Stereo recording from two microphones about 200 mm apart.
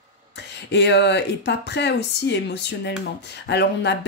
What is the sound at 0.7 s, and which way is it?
Speech, 60° left (ahead or behind).